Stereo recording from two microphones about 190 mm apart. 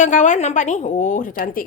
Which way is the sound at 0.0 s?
40° left (ahead or behind).